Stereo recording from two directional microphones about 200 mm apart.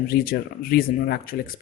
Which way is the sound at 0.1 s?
45° left (ahead or behind).